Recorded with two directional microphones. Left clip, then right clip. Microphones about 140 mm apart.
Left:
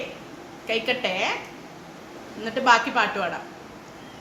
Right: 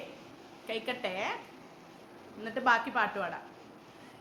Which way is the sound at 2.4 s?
60° right (ahead or behind).